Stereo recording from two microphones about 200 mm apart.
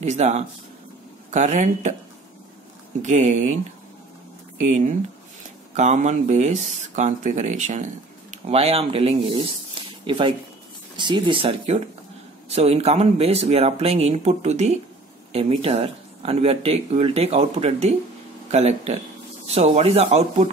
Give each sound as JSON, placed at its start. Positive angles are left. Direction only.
{"t": 0.0, "sound": "speech", "side_deg": -35}
{"t": 3.0, "sound": "speech", "side_deg": -35}
{"t": 4.6, "sound": "speech", "side_deg": -35}